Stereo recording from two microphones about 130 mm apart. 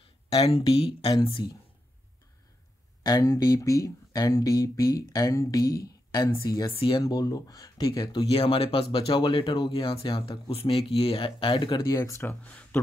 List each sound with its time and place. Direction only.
0.0 s speech: 45° left (ahead or behind)
3.0 s speech: 30° left (ahead or behind)
6.7 s speech: 45° left (ahead or behind)
7.0 s speech: 30° left (ahead or behind)
11.9 s speech: 20° left (ahead or behind)